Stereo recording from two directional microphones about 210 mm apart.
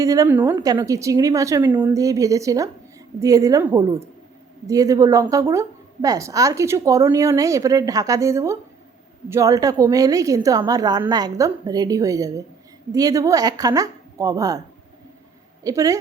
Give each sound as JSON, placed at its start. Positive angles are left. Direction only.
{"t": 0.0, "sound": "a woman's voice", "side_deg": -15}
{"t": 15.6, "sound": "a woman's voice", "side_deg": -15}